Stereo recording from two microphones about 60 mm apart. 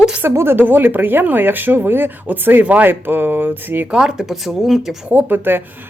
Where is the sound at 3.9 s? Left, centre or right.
Centre.